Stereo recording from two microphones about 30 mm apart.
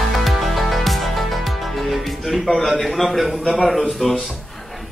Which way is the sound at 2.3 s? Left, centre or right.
Centre.